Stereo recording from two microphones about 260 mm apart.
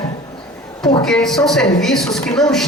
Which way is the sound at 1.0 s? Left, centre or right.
Centre.